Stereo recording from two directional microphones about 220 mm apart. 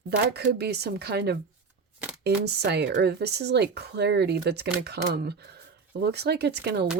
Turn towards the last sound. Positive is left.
turn(degrees=-50)  # may be behind; listen again after turning